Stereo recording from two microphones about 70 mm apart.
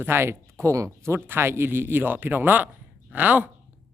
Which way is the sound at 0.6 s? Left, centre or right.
Right.